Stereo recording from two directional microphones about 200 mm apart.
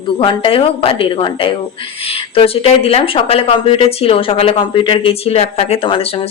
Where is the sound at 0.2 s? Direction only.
25° left (ahead or behind).